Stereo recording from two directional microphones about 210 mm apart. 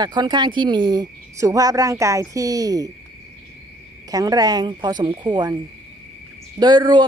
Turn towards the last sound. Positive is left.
turn(degrees=-20)  # may be behind; listen again after turning